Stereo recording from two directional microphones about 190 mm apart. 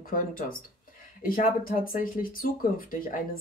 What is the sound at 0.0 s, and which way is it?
Speech, 45° left (ahead or behind).